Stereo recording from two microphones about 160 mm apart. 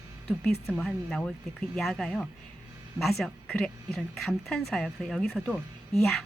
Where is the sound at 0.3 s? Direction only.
10° left (ahead or behind).